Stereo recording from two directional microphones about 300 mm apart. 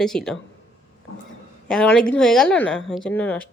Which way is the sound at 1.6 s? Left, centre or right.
Centre.